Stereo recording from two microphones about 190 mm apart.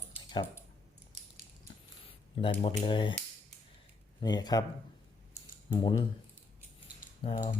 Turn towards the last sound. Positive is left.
turn(degrees=30)  # may be behind; listen again after turning